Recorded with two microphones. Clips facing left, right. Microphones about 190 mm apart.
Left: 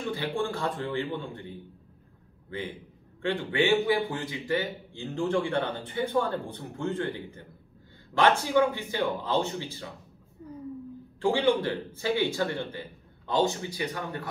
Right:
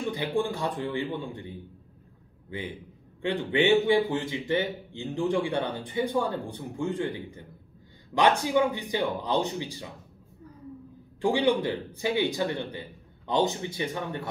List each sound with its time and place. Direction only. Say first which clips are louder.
0.1 s a man's voice: right 1 dB; 15° right (ahead or behind)
3.2 s a man's voice: right 1 dB; 20° right (ahead or behind)
11.1 s a man's voice: even; 15° right (ahead or behind)